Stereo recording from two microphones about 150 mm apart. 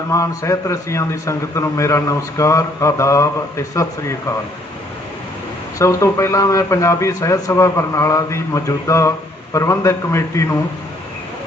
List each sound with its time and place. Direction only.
0.1 s a man's voice: 20° left (ahead or behind)
5.8 s a man's voice: 20° left (ahead or behind)